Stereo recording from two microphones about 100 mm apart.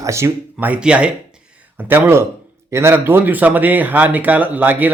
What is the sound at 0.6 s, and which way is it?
A man's voice, 15° right (ahead or behind).